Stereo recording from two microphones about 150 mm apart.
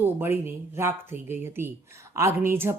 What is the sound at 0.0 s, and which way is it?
A woman's voice, 15° right (ahead or behind).